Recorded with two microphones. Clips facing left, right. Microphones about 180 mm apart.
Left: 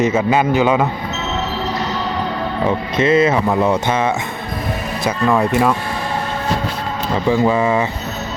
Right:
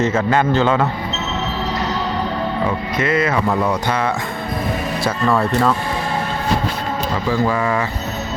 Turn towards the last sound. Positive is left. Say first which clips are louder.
# left 3 dB
turn(degrees=20)  # may be behind; listen again after turning